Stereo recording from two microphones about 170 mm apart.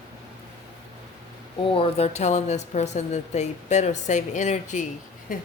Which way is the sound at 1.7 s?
30° left (ahead or behind).